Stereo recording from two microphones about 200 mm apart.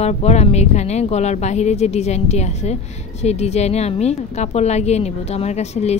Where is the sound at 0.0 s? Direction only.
35° left (ahead or behind).